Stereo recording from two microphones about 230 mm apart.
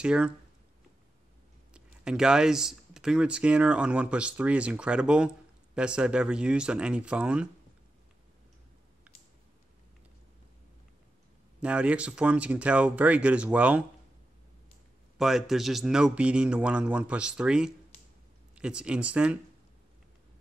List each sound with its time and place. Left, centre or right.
0.0 s speech: centre
1.7 s speech: centre
11.6 s speech: centre
15.1 s speech: centre